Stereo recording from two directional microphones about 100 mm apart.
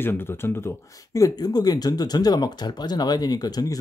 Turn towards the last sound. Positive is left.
turn(degrees=40)  # may be behind; listen again after turning